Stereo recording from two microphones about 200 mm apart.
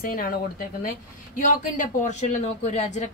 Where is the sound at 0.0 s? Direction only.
50° left (ahead or behind).